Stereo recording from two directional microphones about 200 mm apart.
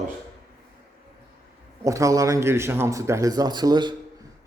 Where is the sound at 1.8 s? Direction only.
15° right (ahead or behind).